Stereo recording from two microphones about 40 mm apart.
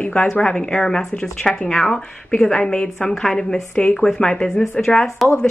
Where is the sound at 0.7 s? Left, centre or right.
Centre.